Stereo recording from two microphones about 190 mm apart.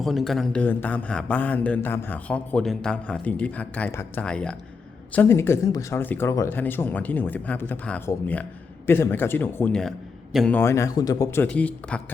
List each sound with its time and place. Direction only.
0.0 s a man's voice: centre (ahead or behind)